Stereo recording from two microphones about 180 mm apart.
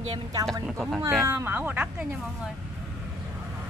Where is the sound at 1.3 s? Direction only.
15° right (ahead or behind).